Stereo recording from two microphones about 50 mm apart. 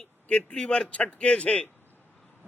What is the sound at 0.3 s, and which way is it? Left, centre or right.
A man's voice, centre.